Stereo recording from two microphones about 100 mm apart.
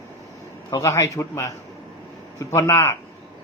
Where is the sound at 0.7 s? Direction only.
30° left (ahead or behind).